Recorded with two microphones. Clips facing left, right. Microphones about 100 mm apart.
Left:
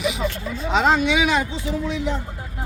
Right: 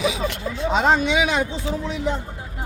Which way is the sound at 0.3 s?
85° right.